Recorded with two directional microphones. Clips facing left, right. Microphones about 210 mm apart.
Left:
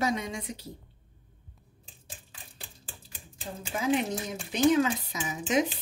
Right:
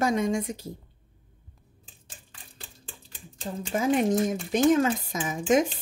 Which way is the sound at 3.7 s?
45° right (ahead or behind).